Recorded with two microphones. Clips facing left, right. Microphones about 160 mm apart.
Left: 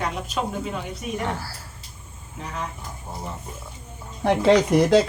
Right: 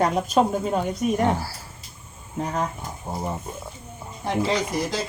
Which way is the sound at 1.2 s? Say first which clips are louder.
Right 6 dB; 20° right (ahead or behind).